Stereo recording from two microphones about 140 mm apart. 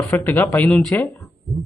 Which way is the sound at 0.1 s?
15° left (ahead or behind).